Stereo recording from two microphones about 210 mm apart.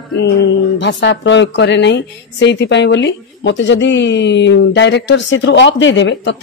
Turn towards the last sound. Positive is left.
turn(degrees=60)  # may be behind; listen again after turning